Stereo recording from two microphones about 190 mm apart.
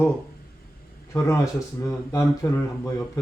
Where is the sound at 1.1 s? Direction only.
15° left (ahead or behind).